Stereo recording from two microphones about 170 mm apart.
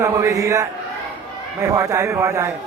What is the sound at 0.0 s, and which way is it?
A man's voice, 20° right (ahead or behind).